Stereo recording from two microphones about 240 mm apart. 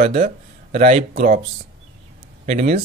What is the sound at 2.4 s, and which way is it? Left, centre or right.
Speech, right.